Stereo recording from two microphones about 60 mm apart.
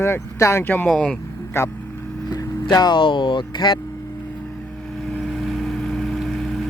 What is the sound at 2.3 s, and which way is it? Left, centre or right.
Vehicle, left.